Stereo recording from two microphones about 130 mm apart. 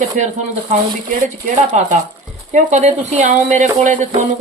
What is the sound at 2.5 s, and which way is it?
Music, 65° right (ahead or behind).